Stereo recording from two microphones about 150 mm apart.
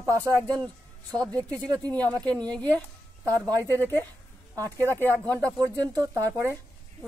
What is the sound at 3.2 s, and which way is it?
Speech, 20° right (ahead or behind).